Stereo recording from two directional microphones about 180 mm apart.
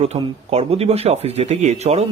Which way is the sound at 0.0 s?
35° right (ahead or behind).